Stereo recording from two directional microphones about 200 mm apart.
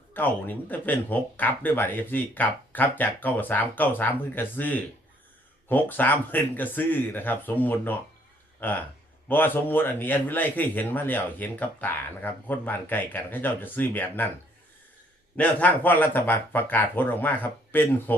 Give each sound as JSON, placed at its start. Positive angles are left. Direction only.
{"t": 0.1, "sound": "a man's voice", "side_deg": 10}
{"t": 15.4, "sound": "a man's voice", "side_deg": 10}